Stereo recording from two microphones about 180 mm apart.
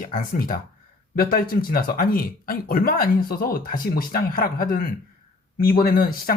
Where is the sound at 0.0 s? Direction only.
50° left (ahead or behind).